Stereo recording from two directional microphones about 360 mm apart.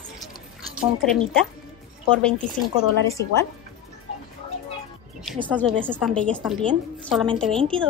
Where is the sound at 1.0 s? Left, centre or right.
Centre.